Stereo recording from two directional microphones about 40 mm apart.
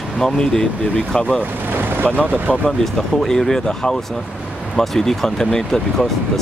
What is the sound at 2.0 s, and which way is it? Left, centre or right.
Speech, left.